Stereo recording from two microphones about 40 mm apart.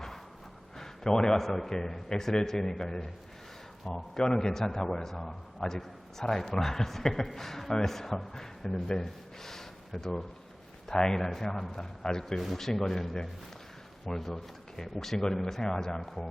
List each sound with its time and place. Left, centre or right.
0.8 s a man's voice: centre
9.0 s snort: centre
10.8 s a man's voice: centre
12.4 s a man's voice: centre
16.0 s speech: centre